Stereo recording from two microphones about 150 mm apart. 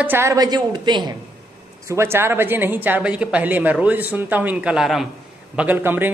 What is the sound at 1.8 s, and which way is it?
Speech, 15° right (ahead or behind).